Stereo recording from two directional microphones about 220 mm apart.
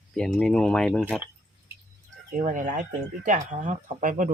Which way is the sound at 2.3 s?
35° right (ahead or behind).